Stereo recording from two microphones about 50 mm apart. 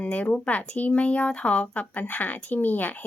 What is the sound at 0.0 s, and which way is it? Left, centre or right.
Speech, left.